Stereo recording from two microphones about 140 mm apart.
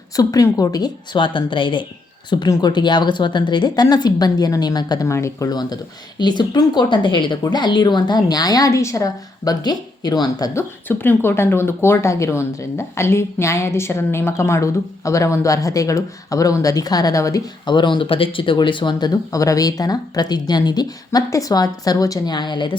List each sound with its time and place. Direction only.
0.2 s a woman's voice: 25° left (ahead or behind)